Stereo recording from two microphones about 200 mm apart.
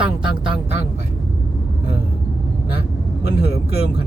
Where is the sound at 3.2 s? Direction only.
55° left (ahead or behind).